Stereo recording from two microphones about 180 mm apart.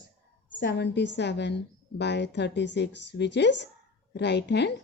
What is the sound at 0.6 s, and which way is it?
A woman's voice, 70° left (ahead or behind).